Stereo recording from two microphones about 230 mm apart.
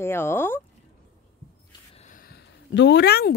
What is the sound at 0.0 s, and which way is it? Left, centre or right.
Speech, centre.